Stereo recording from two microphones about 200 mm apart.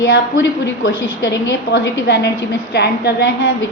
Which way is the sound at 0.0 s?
65° left (ahead or behind).